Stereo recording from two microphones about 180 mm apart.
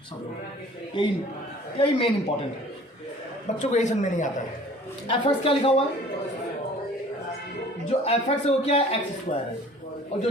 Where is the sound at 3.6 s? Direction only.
40° left (ahead or behind).